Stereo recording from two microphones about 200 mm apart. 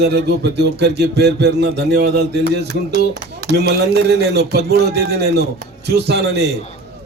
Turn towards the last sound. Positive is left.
turn(degrees=-55)  # may be behind; listen again after turning